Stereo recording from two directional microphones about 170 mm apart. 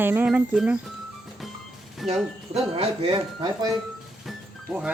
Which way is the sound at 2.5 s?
35° right (ahead or behind).